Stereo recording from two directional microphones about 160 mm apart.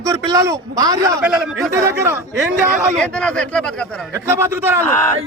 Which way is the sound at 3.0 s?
5° left (ahead or behind).